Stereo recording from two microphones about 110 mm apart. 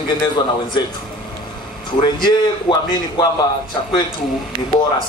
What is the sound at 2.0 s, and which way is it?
A man's voice, 40° left (ahead or behind).